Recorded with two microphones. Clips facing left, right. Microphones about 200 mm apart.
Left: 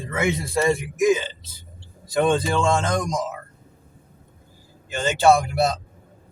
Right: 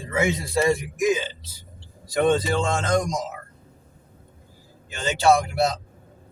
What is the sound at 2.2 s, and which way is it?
Speech, 50° left (ahead or behind).